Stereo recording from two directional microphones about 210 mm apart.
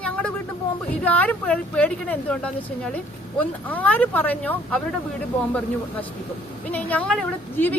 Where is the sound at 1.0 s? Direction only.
5° left (ahead or behind).